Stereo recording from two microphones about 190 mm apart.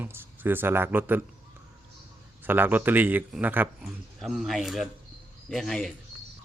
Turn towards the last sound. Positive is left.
turn(degrees=0)  # may be behind; listen again after turning